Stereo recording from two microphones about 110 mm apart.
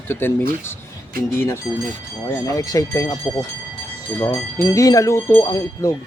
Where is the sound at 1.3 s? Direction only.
20° left (ahead or behind).